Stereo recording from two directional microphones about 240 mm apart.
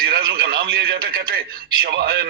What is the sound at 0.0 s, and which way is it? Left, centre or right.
A man's voice, right.